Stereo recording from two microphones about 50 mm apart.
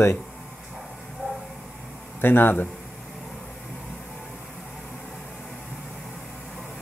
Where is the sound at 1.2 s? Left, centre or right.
Left.